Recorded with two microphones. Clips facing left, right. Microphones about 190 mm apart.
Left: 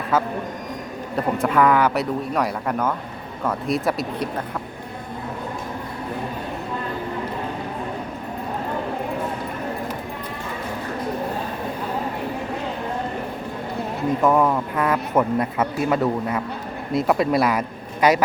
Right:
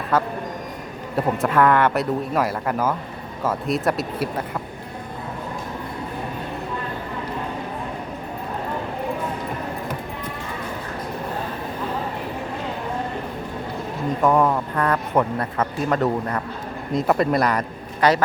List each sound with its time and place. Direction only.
0.1 s a man's voice: centre (ahead or behind)
14.2 s a man's voice: centre (ahead or behind)